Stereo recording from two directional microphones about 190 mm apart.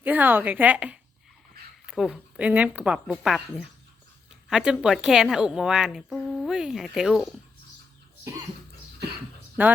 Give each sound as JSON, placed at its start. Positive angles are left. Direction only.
{"t": 0.0, "sound": "a woman's voice", "side_deg": -10}
{"t": 1.6, "sound": "a sound", "side_deg": -55}
{"t": 1.9, "sound": "a woman's voice", "side_deg": -5}
{"t": 9.6, "sound": "a woman's voice", "side_deg": -10}